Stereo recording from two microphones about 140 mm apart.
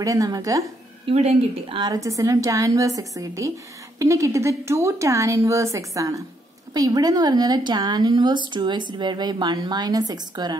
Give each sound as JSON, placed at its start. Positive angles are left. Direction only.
{"t": 0.0, "sound": "a woman's voice", "side_deg": -25}
{"t": 1.0, "sound": "a woman's voice", "side_deg": -45}
{"t": 1.8, "sound": "a woman's voice", "side_deg": -25}